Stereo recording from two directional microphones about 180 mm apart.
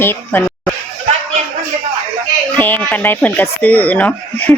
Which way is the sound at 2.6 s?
10° left (ahead or behind).